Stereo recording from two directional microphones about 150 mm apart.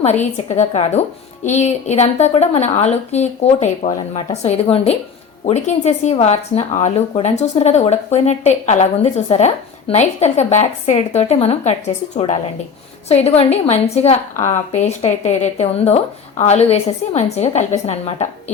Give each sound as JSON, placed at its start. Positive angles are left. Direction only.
{"t": 0.0, "sound": "speech", "side_deg": 50}